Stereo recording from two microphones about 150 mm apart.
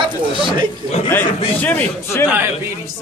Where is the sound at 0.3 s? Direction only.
35° right (ahead or behind).